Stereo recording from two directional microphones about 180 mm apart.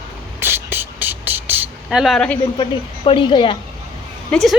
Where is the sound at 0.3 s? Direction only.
10° right (ahead or behind); by 2.4 s 5° left (ahead or behind).